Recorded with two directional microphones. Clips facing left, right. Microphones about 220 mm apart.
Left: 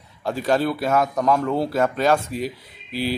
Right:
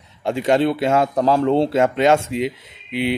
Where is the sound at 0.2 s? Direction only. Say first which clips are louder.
Right 4 dB; 25° right (ahead or behind).